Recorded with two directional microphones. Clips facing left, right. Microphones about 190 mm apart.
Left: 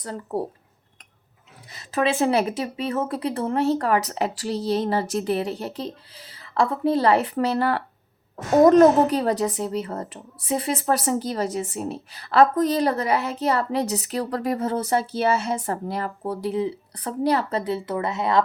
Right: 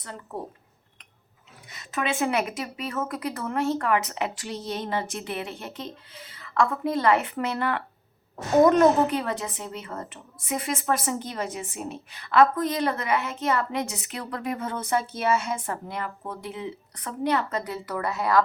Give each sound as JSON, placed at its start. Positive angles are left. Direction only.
{"t": 0.0, "sound": "a woman's voice", "side_deg": 35}
{"t": 1.7, "sound": "a woman's voice", "side_deg": 35}